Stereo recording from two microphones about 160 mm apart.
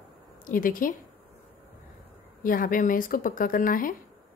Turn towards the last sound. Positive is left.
turn(degrees=60)  # may be behind; listen again after turning